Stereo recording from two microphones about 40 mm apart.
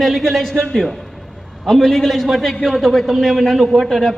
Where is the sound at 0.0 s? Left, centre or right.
Centre.